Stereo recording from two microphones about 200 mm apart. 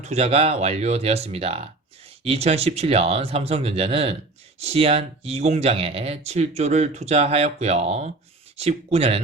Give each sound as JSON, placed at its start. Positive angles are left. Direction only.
{"t": 0.0, "sound": "speech", "side_deg": -30}